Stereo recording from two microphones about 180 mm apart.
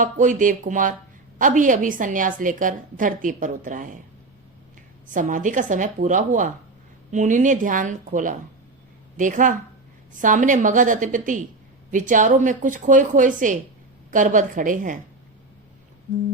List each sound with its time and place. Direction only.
0.0 s a woman's voice: 45° right (ahead or behind)
5.0 s a woman's voice: 45° right (ahead or behind)